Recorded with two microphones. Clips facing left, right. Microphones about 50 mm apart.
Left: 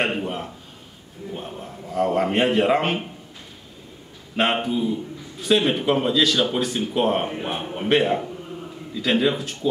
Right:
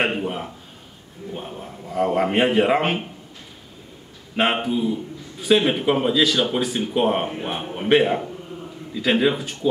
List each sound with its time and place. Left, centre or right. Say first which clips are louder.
0.0 s a man's voice: right 1 dB; centre
4.4 s a man's voice: right 1 dB; centre